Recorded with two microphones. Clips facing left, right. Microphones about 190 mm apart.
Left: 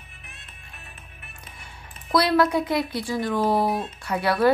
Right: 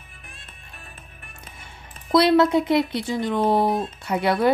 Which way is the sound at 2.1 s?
25° right (ahead or behind).